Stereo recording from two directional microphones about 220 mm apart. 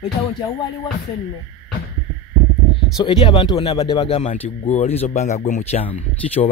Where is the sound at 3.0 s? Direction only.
20° left (ahead or behind).